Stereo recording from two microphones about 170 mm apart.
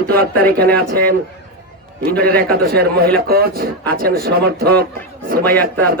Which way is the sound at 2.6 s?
65° right (ahead or behind).